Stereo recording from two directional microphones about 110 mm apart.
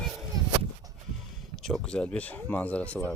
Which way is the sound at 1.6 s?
5° left (ahead or behind).